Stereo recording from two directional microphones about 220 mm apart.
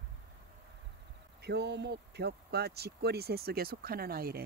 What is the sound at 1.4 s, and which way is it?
Speech, 50° right (ahead or behind).